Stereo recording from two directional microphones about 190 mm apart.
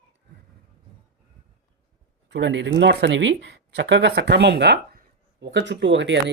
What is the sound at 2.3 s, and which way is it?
Speech, 65° right (ahead or behind).